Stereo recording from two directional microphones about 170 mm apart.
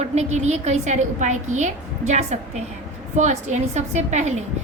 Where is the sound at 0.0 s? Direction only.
40° right (ahead or behind).